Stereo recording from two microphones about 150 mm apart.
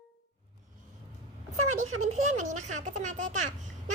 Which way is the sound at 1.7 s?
50° right (ahead or behind).